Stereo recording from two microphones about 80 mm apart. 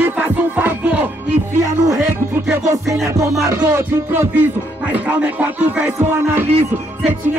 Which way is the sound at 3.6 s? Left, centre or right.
Right.